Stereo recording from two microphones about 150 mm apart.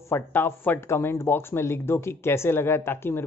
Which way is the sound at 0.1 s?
15° left (ahead or behind).